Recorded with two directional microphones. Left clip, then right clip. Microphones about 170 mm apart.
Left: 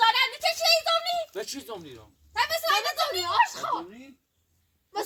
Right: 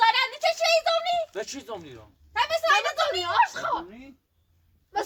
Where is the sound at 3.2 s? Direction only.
35° right (ahead or behind).